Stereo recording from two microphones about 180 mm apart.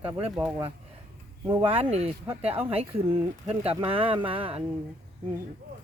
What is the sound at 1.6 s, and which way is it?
Speech, 35° right (ahead or behind).